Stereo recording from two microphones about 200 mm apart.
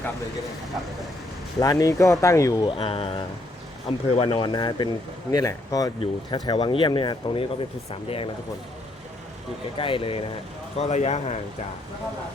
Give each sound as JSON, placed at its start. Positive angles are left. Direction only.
{"t": 1.5, "sound": "speech", "side_deg": 15}
{"t": 9.7, "sound": "speech", "side_deg": 25}